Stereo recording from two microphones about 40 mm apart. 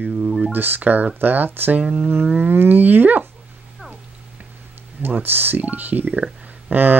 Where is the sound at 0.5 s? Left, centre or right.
Right.